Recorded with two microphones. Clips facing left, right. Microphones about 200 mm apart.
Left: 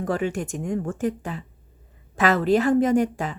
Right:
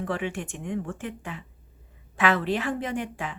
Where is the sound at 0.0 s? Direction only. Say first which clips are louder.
Left 5 dB; 40° left (ahead or behind).